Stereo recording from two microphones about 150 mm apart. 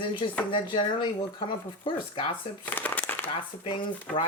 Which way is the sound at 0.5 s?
35° left (ahead or behind).